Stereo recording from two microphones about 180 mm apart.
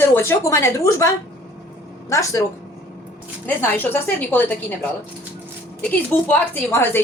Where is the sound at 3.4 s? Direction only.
10° left (ahead or behind).